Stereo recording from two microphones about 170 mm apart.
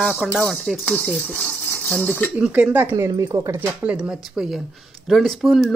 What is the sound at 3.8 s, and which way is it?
Cutlery, 5° right (ahead or behind).